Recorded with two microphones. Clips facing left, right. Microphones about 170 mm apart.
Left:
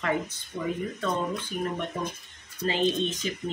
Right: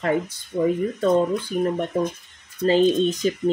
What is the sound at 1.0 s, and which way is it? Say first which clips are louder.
Speech: right 12 dB; 40° right (ahead or behind).